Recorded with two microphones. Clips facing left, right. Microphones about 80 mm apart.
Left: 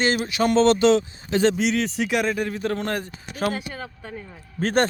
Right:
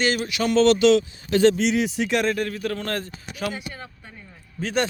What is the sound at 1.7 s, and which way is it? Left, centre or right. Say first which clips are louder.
Speech: right 1 dB; centre.